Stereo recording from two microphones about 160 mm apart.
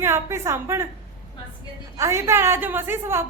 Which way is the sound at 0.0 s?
15° right (ahead or behind).